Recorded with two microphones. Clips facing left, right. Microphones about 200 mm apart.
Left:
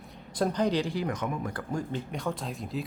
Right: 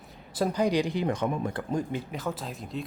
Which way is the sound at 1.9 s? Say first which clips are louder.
Even; 5° right (ahead or behind).